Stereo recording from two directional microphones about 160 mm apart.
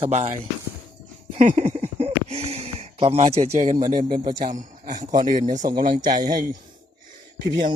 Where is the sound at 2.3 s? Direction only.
40° right (ahead or behind).